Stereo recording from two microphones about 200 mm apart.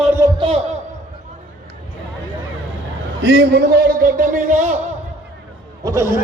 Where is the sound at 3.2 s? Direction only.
55° right (ahead or behind); by 4.8 s 40° right (ahead or behind).